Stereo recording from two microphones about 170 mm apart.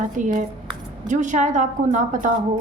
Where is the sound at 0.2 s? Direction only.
50° right (ahead or behind).